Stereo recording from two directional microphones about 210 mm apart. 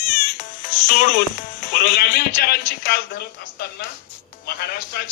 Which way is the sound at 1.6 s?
50° left (ahead or behind).